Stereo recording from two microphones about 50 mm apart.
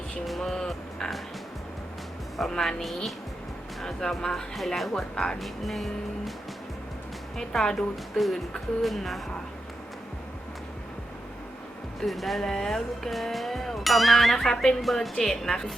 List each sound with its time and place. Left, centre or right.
0.3 s speech: centre
2.4 s speech: centre
4.1 s speech: centre
5.1 s speech: centre
5.4 s speech: centre
7.6 s speech: centre
11.9 s speech: centre